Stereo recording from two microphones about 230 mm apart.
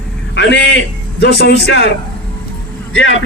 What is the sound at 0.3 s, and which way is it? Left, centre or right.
A man's voice, left.